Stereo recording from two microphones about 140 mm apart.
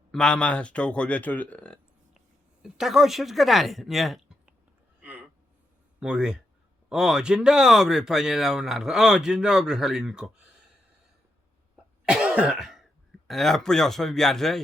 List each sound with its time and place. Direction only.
0.1 s speech: 5° left (ahead or behind)
2.1 s speech: 5° right (ahead or behind)
4.9 s a sound: 10° right (ahead or behind)
6.0 s speech: 5° right (ahead or behind)
12.0 s speech: 10° right (ahead or behind)